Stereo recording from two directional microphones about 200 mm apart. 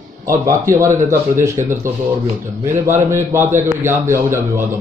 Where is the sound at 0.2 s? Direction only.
15° right (ahead or behind).